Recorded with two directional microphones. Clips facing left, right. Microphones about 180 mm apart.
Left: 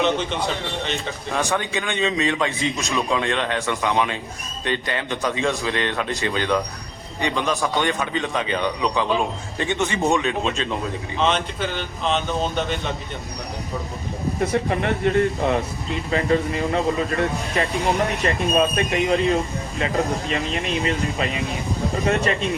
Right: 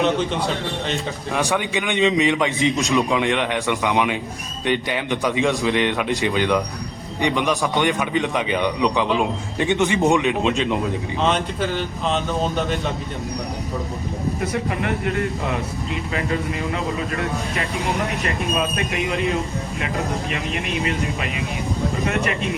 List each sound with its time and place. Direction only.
0.9 s a man's voice: 10° right (ahead or behind)
12.0 s speech: 5° right (ahead or behind)
14.5 s speech: 30° left (ahead or behind)
18.3 s speech: 35° left (ahead or behind)
20.3 s speech: 30° left (ahead or behind)